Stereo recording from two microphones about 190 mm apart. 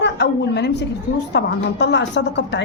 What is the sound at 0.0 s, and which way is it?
A woman's voice, 65° left (ahead or behind).